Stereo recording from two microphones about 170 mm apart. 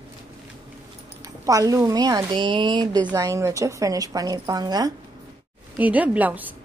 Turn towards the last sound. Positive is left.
turn(degrees=-10)  # may be behind; listen again after turning